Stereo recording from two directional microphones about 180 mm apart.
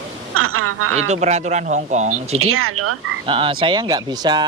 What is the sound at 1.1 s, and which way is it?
Speech, 40° right (ahead or behind).